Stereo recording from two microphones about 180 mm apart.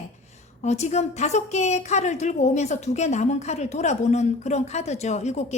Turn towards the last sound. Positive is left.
turn(degrees=40)  # may be behind; listen again after turning